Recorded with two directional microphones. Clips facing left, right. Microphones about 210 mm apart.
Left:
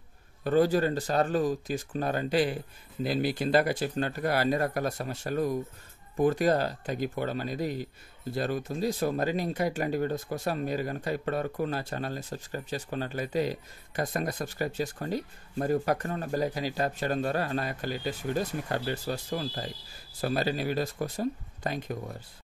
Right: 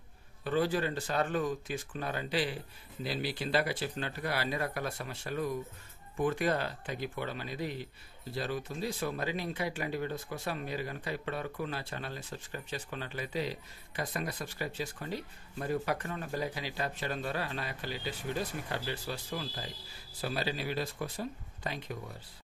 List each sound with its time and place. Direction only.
0.4 s speech: 45° left (ahead or behind)